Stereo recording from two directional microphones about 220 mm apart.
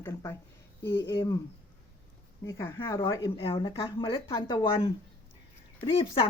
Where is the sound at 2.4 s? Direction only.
15° left (ahead or behind).